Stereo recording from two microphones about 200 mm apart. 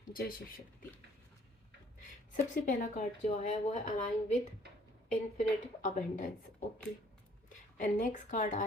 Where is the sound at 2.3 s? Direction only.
40° left (ahead or behind).